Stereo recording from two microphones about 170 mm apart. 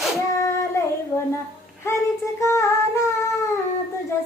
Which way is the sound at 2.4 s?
15° left (ahead or behind).